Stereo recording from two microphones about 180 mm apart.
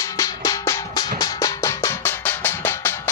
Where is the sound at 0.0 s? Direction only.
20° left (ahead or behind).